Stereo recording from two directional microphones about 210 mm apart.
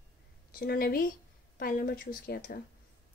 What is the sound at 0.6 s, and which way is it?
A woman's voice, 45° left (ahead or behind).